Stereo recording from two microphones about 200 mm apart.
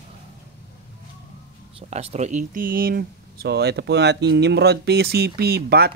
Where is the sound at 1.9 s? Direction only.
35° right (ahead or behind).